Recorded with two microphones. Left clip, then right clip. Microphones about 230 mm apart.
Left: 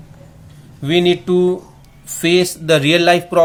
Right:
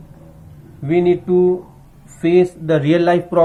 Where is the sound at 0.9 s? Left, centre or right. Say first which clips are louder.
Left 1 dB; left.